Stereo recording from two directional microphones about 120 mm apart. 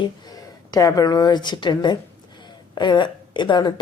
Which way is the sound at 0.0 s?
35° left (ahead or behind).